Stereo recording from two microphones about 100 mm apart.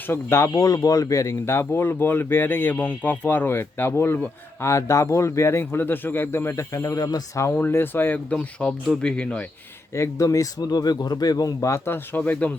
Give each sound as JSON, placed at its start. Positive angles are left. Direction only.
{"t": 0.1, "sound": "speech", "side_deg": 25}
{"t": 7.5, "sound": "speech", "side_deg": 20}
{"t": 9.9, "sound": "speech", "side_deg": 30}